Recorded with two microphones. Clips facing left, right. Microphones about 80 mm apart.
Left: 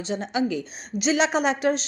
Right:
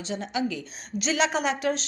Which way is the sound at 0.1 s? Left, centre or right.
Left.